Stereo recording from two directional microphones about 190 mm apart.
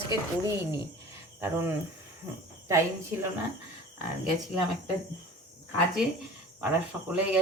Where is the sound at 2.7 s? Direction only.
15° right (ahead or behind).